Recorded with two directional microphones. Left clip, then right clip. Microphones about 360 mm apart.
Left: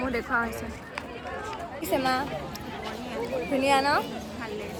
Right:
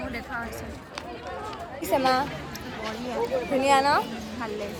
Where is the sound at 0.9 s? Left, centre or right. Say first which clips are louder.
Right 1 dB; left.